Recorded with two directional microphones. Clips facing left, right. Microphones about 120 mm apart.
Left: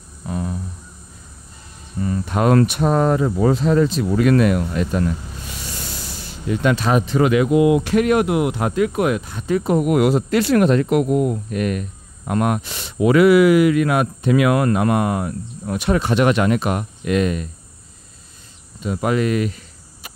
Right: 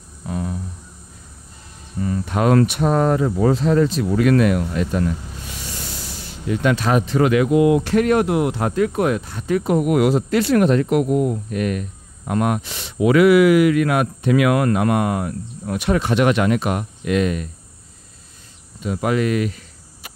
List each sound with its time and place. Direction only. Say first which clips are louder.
0.3 s a sound: even; 25° left (ahead or behind)
2.0 s speech: left 1 dB; 35° left (ahead or behind)
2.8 s speech: even; 20° left (ahead or behind)
4.2 s speech: even; 30° left (ahead or behind)
6.4 s speech: even; 25° left (ahead or behind)
9.5 s speech: even; 30° left (ahead or behind)
9.8 s speech: even; 50° left (ahead or behind)
10.4 s speech: even; 85° left
11.1 s speech: even; 20° left (ahead or behind)
11.5 s speech: even; 45° left (ahead or behind)
18.8 s cricket: even; 35° left (ahead or behind)